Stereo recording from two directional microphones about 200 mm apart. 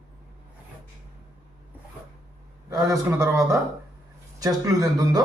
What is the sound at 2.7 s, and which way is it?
A man's voice, 15° right (ahead or behind).